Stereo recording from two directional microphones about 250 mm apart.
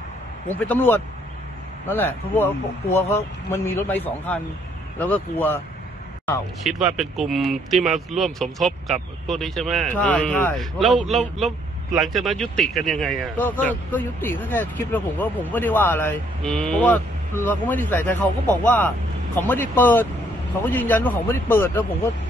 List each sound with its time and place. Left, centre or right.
0.6 s speech: centre
6.6 s speech: centre